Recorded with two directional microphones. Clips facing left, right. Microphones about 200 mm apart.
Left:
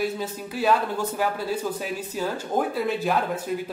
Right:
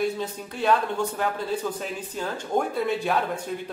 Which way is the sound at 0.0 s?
5° left (ahead or behind).